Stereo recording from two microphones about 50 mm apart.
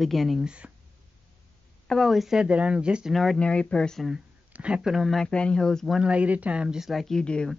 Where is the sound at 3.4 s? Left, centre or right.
Left.